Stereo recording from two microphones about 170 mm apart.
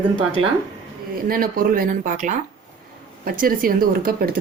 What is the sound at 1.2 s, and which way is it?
Speech, 60° right (ahead or behind).